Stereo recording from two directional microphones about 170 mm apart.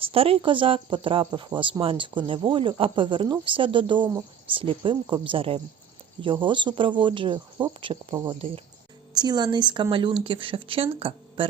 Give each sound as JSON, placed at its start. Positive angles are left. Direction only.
{"t": 0.0, "sound": "speech", "side_deg": -35}